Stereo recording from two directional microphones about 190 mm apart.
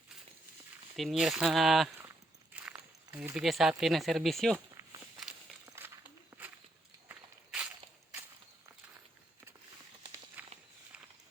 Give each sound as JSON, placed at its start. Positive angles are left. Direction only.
{"t": 0.9, "sound": "speech", "side_deg": 0}
{"t": 4.5, "sound": "a sound", "side_deg": -20}
{"t": 5.6, "sound": "walk", "side_deg": -10}
{"t": 10.4, "sound": "walk", "side_deg": -10}